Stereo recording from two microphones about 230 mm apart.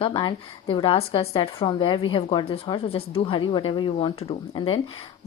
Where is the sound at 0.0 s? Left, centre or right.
Left.